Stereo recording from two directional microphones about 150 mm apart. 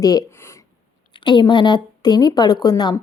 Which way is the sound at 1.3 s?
30° left (ahead or behind).